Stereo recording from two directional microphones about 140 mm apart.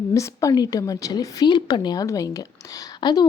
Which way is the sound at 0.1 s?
20° left (ahead or behind).